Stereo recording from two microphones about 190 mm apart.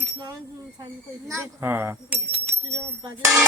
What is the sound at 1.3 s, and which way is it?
Speech, 15° right (ahead or behind).